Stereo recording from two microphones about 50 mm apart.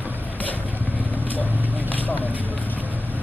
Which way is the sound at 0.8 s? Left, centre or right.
Right.